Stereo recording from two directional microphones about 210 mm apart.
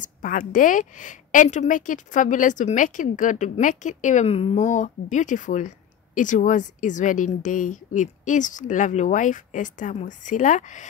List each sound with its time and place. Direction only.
0.0 s a woman's voice: 40° left (ahead or behind)